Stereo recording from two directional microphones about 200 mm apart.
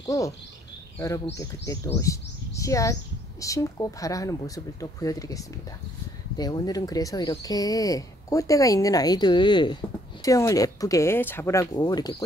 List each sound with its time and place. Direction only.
0.0 s speech: 15° left (ahead or behind)